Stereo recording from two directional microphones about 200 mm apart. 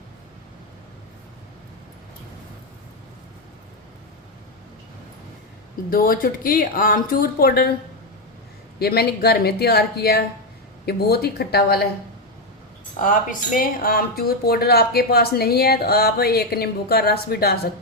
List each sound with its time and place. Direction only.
5.9 s speech: 45° left (ahead or behind)
8.8 s speech: 50° left (ahead or behind)
13.0 s speech: 40° left (ahead or behind)